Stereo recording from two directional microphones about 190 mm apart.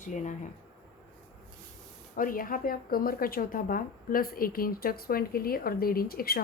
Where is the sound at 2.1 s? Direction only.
45° left (ahead or behind).